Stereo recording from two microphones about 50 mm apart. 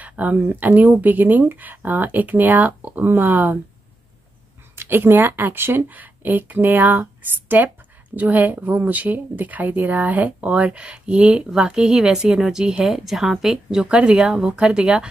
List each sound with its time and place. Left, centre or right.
0.1 s speech: right
4.7 s speech: right
5.9 s speech: right; by 13.8 s centre
13.8 s speech: right